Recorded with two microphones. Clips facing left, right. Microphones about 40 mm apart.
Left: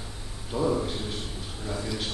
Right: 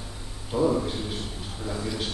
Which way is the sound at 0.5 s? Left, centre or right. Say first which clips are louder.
Right 3 dB; centre.